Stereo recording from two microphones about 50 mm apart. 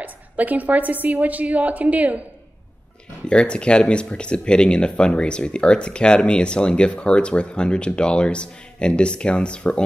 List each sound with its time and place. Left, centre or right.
0.0 s a woman's voice: right
3.3 s speech: left